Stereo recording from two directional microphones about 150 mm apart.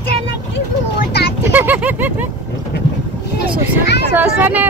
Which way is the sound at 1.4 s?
15° right (ahead or behind).